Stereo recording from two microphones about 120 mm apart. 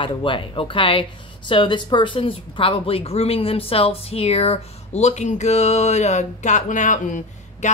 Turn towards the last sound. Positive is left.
turn(degrees=90)